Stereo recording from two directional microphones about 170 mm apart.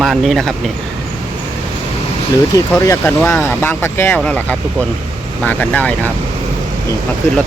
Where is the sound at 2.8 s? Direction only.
20° left (ahead or behind).